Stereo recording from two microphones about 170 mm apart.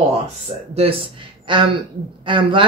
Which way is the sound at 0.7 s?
35° right (ahead or behind).